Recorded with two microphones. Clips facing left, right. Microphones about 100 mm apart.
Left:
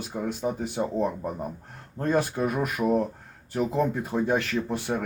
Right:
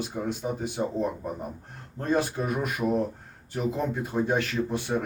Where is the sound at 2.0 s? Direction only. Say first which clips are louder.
Left 2 dB; 50° left (ahead or behind).